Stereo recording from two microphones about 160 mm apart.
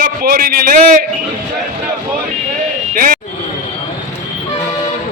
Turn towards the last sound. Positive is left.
turn(degrees=-60)  # may be behind; listen again after turning